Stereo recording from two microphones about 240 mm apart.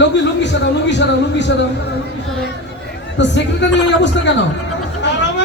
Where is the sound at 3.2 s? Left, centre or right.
Left.